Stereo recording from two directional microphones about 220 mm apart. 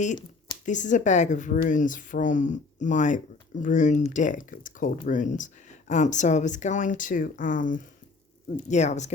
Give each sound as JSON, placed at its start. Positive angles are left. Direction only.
{"t": 0.6, "sound": "speech", "side_deg": 35}